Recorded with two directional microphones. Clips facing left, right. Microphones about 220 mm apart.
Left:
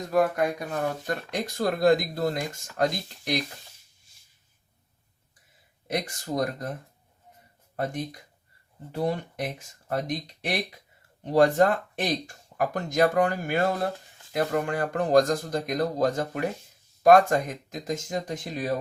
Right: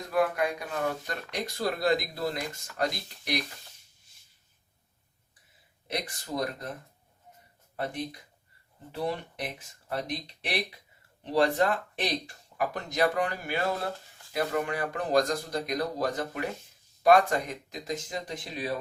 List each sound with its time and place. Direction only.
0.1 s speech: 45° left (ahead or behind)
5.9 s speech: 45° left (ahead or behind)
9.0 s speech: 45° left (ahead or behind)